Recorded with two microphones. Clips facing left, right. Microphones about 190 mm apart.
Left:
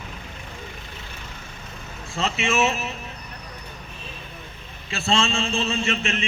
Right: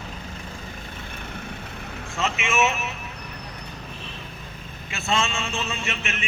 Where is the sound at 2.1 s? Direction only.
35° left (ahead or behind).